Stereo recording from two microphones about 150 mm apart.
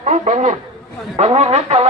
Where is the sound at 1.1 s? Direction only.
45° right (ahead or behind).